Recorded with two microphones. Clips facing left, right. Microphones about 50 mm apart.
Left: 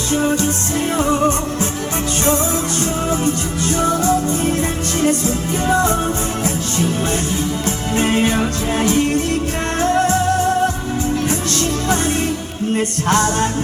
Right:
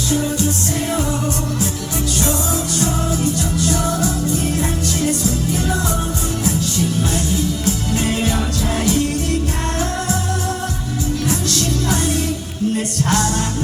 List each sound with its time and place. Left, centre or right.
0.1 s music: left
3.2 s music: left
7.6 s music: left
11.3 s music: left